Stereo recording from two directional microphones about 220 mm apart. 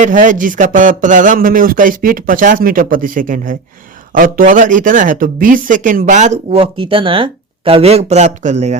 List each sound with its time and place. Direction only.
0.0 s speech: 35° right (ahead or behind)